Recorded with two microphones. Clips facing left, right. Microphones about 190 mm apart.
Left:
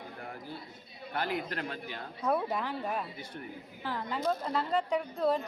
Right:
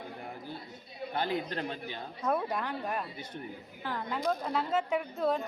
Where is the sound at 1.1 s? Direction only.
20° right (ahead or behind).